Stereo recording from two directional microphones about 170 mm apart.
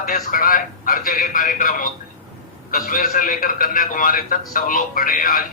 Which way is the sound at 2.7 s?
55° left (ahead or behind).